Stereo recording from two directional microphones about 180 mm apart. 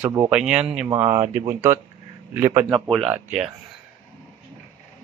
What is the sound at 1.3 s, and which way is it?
A man's voice, 15° right (ahead or behind).